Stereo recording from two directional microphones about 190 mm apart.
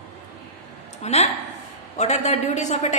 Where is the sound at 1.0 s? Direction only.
35° left (ahead or behind).